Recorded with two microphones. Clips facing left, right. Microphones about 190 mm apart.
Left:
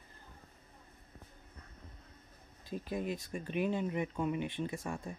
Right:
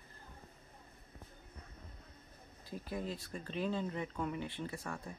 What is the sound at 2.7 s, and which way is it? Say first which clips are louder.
Speech: left 4 dB; 20° left (ahead or behind).